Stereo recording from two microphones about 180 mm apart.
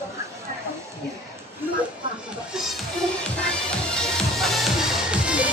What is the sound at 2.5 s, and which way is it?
Music, centre (ahead or behind).